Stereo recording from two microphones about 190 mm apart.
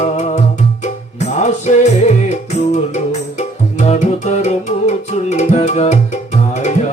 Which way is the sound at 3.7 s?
35° left (ahead or behind).